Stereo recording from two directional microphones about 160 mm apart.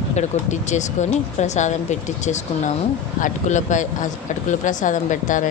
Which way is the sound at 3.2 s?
50° left (ahead or behind).